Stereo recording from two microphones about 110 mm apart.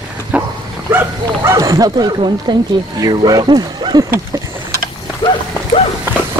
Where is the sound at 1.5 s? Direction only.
35° right (ahead or behind).